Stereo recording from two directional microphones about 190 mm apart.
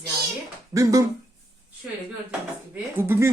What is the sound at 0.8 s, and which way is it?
Speech, 15° right (ahead or behind).